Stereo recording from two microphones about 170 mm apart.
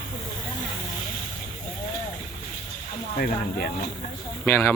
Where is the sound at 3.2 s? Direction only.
60° left (ahead or behind).